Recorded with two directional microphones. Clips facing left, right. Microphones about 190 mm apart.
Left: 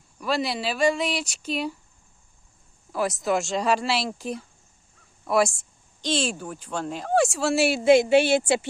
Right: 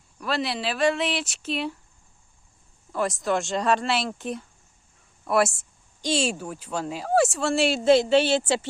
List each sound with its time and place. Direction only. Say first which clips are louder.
0.2 s speech: left 1 dB; centre (ahead or behind)
2.9 s speech: left 1 dB; 5° left (ahead or behind)